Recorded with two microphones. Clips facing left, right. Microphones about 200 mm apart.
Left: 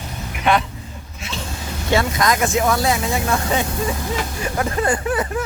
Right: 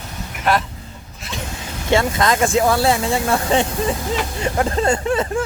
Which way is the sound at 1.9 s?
25° right (ahead or behind).